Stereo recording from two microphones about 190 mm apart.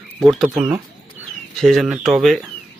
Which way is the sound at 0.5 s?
20° right (ahead or behind).